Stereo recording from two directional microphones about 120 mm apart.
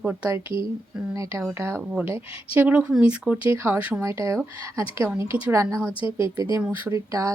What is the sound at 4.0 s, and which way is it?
A woman's voice, 25° right (ahead or behind).